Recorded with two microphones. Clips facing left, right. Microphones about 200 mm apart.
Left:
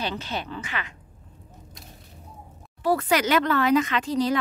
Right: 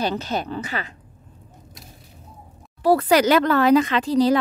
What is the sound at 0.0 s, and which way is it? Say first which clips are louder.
Speech: right 6 dB; 40° right (ahead or behind).